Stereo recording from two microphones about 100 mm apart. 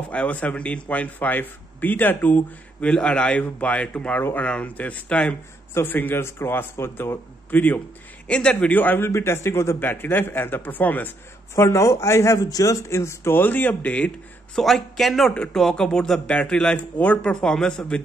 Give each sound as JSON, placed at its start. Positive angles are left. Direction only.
{"t": 0.1, "sound": "speech", "side_deg": 15}
{"t": 4.2, "sound": "a man's voice", "side_deg": 25}
{"t": 11.6, "sound": "speech", "side_deg": 30}